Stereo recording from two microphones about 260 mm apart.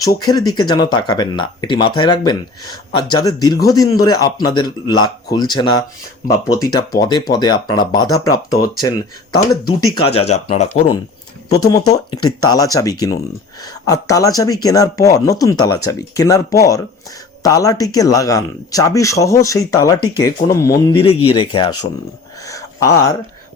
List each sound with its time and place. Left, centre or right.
0.0 s speech: centre
10.2 s speech: left
11.4 s speech: centre
22.4 s a sound: centre